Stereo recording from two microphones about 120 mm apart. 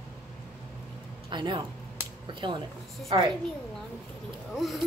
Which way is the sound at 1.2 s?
40° right (ahead or behind).